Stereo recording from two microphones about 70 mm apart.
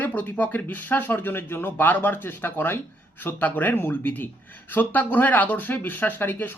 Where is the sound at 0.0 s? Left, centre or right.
Left.